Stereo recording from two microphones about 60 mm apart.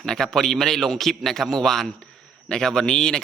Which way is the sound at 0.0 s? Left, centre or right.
Centre.